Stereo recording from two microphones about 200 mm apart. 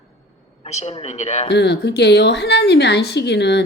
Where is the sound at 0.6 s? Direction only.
35° left (ahead or behind).